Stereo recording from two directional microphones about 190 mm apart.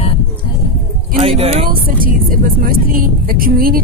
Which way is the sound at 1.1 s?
30° right (ahead or behind).